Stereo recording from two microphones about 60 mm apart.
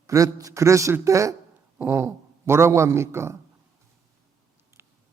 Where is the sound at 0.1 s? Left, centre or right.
Right.